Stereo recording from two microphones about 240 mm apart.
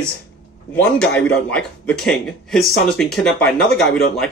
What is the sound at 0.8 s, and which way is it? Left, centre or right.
Speech, centre.